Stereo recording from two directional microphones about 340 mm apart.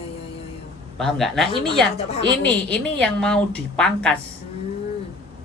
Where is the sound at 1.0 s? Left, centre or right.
Centre.